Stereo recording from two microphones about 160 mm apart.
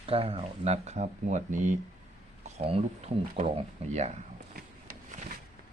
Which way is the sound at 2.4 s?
40° right (ahead or behind).